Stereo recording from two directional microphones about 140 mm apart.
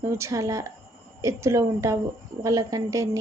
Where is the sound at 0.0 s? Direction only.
20° right (ahead or behind).